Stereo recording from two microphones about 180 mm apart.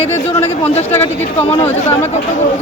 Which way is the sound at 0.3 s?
35° left (ahead or behind).